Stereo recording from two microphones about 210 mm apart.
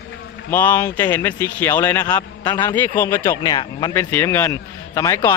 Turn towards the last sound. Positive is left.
turn(degrees=15)  # may be behind; listen again after turning